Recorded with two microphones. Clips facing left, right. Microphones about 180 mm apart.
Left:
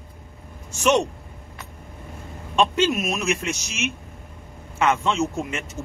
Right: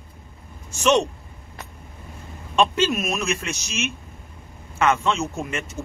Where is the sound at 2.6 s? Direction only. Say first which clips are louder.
Even; 20° left (ahead or behind).